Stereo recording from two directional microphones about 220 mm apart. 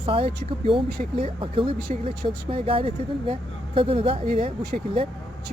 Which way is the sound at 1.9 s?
35° right (ahead or behind).